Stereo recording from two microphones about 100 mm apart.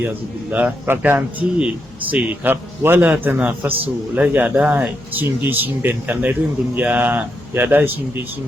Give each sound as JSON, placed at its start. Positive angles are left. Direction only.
{"t": 0.5, "sound": "speech", "side_deg": -15}